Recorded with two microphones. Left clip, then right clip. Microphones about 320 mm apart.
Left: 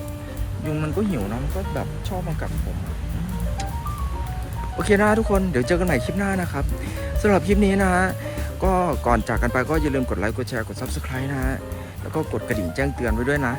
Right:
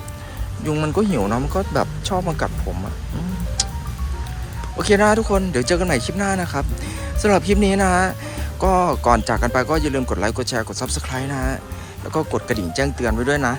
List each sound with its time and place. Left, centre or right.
0.7 s speech: centre
4.8 s speech: centre